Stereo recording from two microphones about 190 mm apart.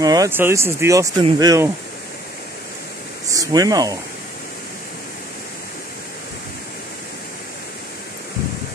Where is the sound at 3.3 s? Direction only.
20° right (ahead or behind).